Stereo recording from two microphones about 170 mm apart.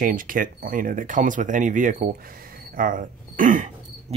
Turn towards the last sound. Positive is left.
turn(degrees=-50)  # may be behind; listen again after turning